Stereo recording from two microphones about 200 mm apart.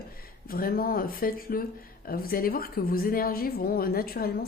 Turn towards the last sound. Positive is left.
turn(degrees=50)  # may be behind; listen again after turning